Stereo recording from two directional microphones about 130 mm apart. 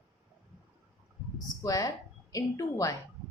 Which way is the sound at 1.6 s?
25° left (ahead or behind).